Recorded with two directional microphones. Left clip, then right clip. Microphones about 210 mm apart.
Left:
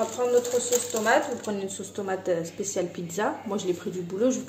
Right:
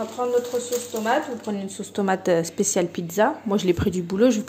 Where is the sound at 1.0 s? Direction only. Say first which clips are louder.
Right 1 dB; 20° right (ahead or behind).